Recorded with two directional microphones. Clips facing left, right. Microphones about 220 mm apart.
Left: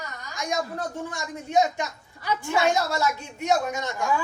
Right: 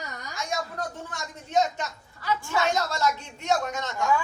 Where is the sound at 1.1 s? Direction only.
10° left (ahead or behind).